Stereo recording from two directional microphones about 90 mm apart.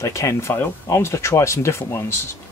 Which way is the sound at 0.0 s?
35° left (ahead or behind).